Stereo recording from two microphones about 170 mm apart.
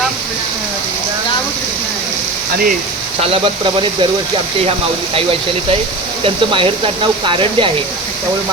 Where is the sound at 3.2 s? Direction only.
30° right (ahead or behind).